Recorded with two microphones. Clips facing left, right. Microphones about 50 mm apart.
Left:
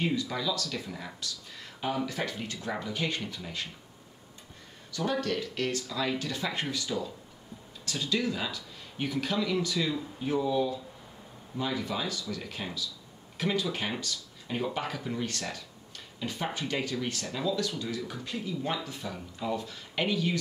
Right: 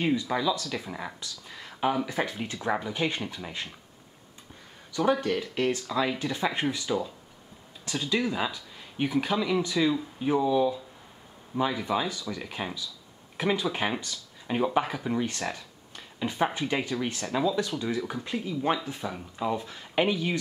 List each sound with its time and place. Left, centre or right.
0.0 s speech: centre
5.2 s speech: centre